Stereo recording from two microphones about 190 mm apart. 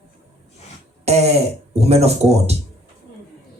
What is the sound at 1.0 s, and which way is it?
Speech, 35° right (ahead or behind).